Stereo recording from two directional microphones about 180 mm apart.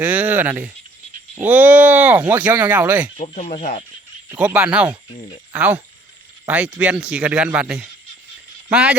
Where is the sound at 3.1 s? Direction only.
35° left (ahead or behind).